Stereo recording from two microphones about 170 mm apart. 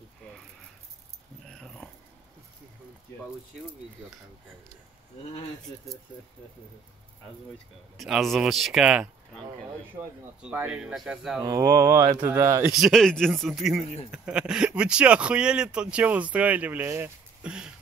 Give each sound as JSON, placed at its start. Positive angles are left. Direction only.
{"t": 1.5, "sound": "dog", "side_deg": 0}
{"t": 7.5, "sound": "speech", "side_deg": 0}
{"t": 10.4, "sound": "speech", "side_deg": -10}
{"t": 11.4, "sound": "speech", "side_deg": -15}
{"t": 12.7, "sound": "speech", "side_deg": 0}